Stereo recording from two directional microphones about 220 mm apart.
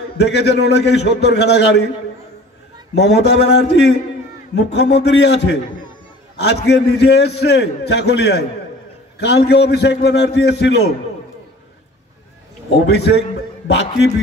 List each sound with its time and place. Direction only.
0.2 s a man's voice: 50° left (ahead or behind)
2.9 s a man's voice: 50° left (ahead or behind)
12.6 s a man's voice: 50° left (ahead or behind)